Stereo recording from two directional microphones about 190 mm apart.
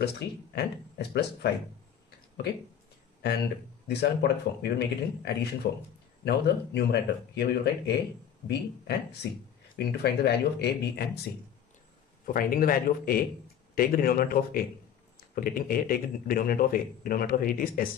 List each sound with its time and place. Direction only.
0.6 s speech: 60° left (ahead or behind)
3.8 s speech: 60° left (ahead or behind)
12.3 s speech: 50° left (ahead or behind)